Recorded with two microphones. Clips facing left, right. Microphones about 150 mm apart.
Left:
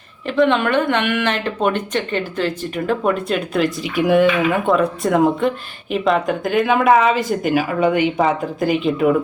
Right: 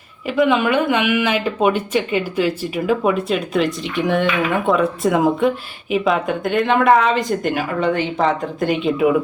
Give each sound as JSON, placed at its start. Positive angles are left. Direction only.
{"t": 0.3, "sound": "speech", "side_deg": -5}